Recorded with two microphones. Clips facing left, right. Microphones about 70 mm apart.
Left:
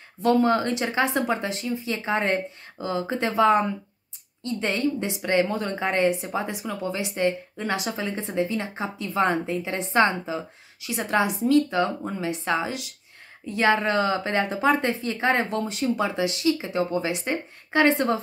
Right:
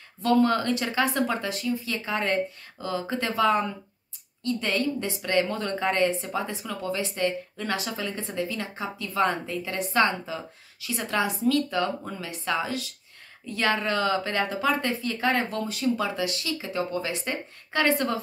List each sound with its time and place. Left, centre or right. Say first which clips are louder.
0.2 s a woman's voice: left 2 dB; left